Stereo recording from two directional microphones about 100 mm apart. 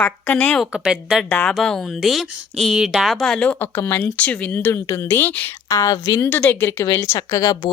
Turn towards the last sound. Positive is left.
turn(degrees=40)  # may be behind; listen again after turning